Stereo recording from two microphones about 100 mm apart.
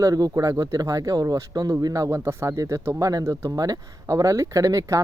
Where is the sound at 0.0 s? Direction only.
35° right (ahead or behind).